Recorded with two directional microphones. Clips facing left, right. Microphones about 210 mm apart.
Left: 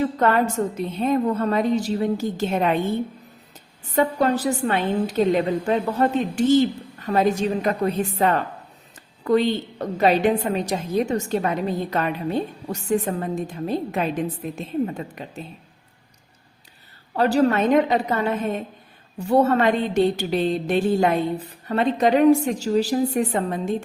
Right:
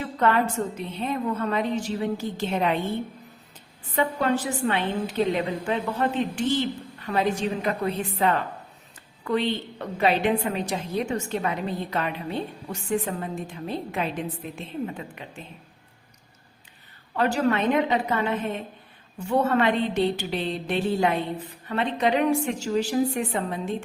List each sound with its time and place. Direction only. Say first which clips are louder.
0.2 s a woman's voice: right 1 dB; 40° left (ahead or behind)
3.9 s a woman's voice: left 4 dB; 40° left (ahead or behind)
17.2 s a woman's voice: left 5 dB; 35° left (ahead or behind)